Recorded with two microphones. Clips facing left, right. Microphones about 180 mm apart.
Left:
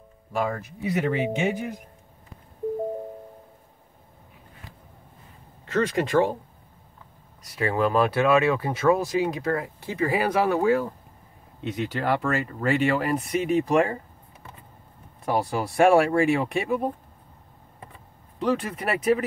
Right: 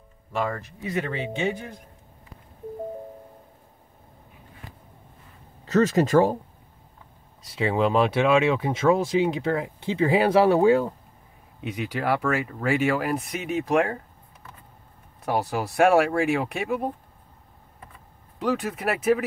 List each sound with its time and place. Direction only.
0.3 s speech: 10° left (ahead or behind)
5.7 s speech: 40° right (ahead or behind)
7.5 s speech: 20° right (ahead or behind)
11.6 s speech: 10° right (ahead or behind)
15.2 s speech: centre (ahead or behind)
18.4 s speech: 5° right (ahead or behind)